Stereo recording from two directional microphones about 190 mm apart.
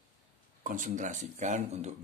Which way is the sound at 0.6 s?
40° right (ahead or behind).